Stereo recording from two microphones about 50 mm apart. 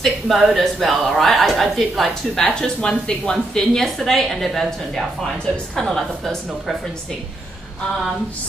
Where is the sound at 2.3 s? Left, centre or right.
Centre.